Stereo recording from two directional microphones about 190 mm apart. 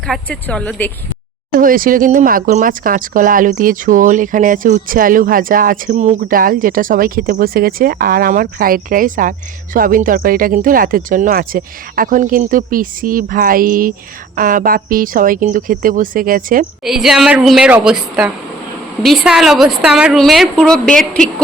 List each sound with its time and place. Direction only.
0.1 s a woman's voice: 5° left (ahead or behind)
1.5 s speech: 45° right (ahead or behind)
16.8 s a woman's voice: centre (ahead or behind)